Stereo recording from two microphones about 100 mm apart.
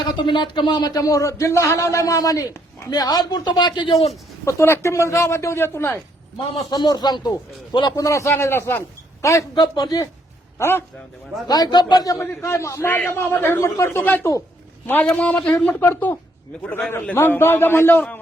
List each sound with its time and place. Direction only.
0.1 s speech: 50° left (ahead or behind); by 2.9 s 30° left (ahead or behind)
2.9 s speech: 45° left (ahead or behind)
4.4 s speech: 25° left (ahead or behind)
6.7 s speech: 45° left (ahead or behind)
7.9 s speech: 30° left (ahead or behind)
9.6 s speech: 45° left (ahead or behind)
10.6 s speech: 25° left (ahead or behind)
11.4 s speech: 40° left (ahead or behind)
12.2 s a man's voice: 25° left (ahead or behind)